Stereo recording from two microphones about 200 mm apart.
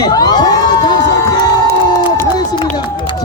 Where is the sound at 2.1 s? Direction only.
20° left (ahead or behind).